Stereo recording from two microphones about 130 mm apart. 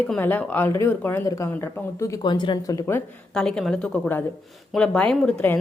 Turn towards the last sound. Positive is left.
turn(degrees=5)  # may be behind; listen again after turning